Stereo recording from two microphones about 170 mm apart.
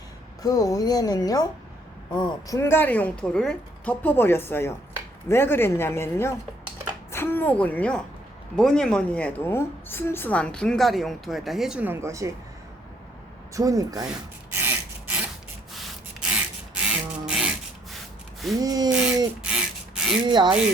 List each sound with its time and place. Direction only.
0.4 s speech: 20° left (ahead or behind)
2.6 s a woman's voice: 15° left (ahead or behind); by 12.3 s 15° right (ahead or behind)
13.5 s speech: 20° right (ahead or behind)
14.5 s wood: 10° right (ahead or behind)
15.7 s rub: 5° right (ahead or behind)
18.6 s speech: 20° right (ahead or behind)
18.9 s speech: 5° right (ahead or behind)
19.5 s a sound: 5° right (ahead or behind)
20.2 s speech: 25° right (ahead or behind)